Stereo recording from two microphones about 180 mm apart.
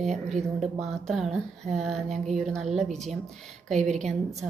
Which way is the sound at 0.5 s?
Centre (ahead or behind).